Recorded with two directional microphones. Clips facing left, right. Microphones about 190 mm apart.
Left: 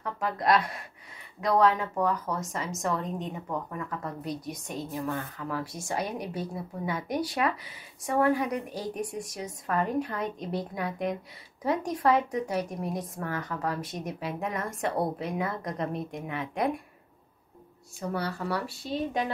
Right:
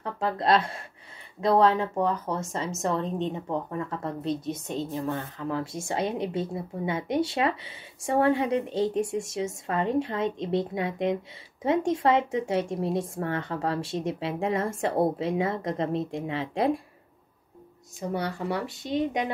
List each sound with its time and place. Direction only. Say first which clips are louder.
0.0 s a woman's voice: right 2 dB; 25° right (ahead or behind)
18.0 s a woman's voice: right 2 dB; 20° right (ahead or behind)